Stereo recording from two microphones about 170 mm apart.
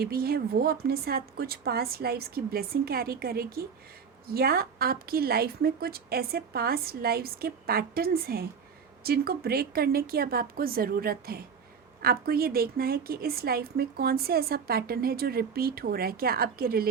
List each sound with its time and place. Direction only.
0.0 s a woman's voice: 60° right (ahead or behind)